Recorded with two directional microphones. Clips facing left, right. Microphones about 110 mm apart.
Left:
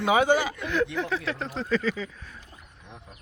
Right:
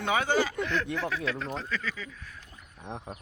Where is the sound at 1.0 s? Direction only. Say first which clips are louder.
Left 2 dB; 30° left (ahead or behind).